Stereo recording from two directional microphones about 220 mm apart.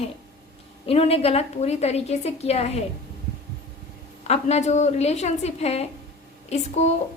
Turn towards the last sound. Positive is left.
turn(degrees=30)  # may be behind; listen again after turning